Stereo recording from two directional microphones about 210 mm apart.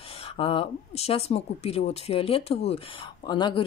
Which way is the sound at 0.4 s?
25° left (ahead or behind).